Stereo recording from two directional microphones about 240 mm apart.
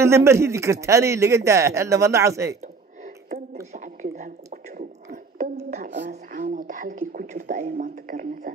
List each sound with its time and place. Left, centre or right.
0.0 s a man's voice: centre
3.5 s a sound: right
6.0 s speech: right